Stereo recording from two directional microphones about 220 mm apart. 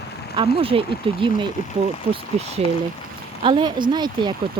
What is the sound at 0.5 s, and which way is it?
Speech, 25° right (ahead or behind).